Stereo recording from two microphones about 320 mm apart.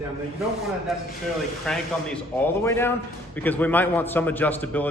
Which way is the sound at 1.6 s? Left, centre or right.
Centre.